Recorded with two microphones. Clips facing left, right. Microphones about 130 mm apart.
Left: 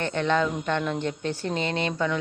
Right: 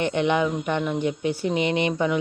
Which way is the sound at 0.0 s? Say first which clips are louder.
Right 3 dB; 15° right (ahead or behind).